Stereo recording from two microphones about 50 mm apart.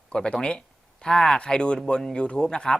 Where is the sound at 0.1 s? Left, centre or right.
Centre.